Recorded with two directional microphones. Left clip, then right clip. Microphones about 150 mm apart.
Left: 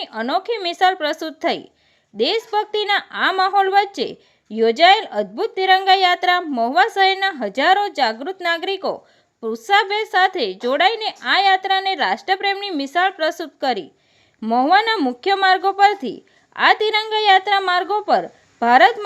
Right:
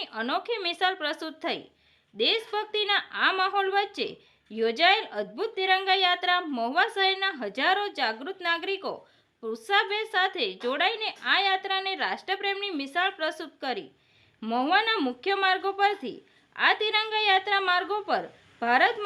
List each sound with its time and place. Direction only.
0.0 s a woman's voice: 45° left (ahead or behind)